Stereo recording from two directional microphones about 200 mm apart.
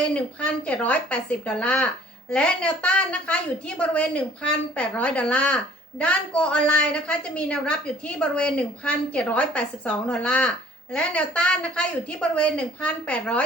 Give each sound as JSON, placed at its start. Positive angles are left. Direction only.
{"t": 0.1, "sound": "a woman's voice", "side_deg": 5}